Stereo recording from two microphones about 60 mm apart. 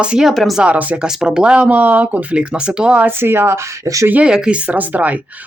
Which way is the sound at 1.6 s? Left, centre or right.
Right.